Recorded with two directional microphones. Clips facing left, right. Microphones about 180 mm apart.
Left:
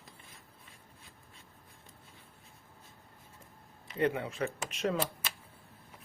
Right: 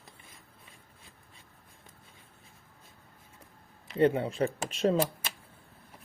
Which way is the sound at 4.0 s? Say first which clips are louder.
Right 6 dB; 30° right (ahead or behind).